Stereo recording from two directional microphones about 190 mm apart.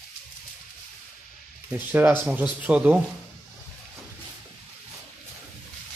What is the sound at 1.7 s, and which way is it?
Speech, 10° right (ahead or behind).